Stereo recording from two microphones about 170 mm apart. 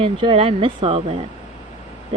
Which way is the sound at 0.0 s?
30° right (ahead or behind).